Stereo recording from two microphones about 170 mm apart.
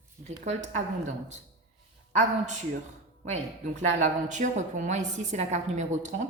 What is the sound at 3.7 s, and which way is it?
Mantra, 45° right (ahead or behind).